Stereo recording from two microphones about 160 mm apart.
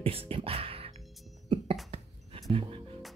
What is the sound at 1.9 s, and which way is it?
Music, 35° right (ahead or behind).